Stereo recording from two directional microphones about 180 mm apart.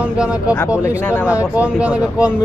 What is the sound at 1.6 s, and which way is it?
Speech, 5° right (ahead or behind).